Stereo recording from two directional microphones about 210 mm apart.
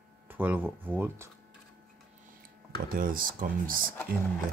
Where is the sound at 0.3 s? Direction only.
10° right (ahead or behind).